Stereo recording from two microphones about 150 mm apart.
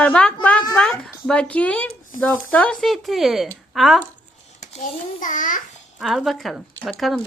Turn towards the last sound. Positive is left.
turn(degrees=0)  # may be behind; listen again after turning